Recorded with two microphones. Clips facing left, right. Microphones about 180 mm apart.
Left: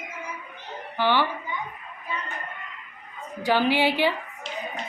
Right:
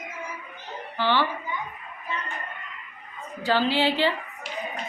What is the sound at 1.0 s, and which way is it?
Speech, 15° left (ahead or behind).